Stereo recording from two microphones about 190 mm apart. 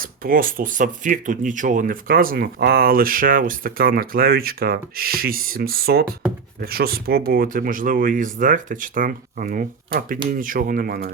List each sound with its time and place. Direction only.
0.0 s speech: 50° right (ahead or behind)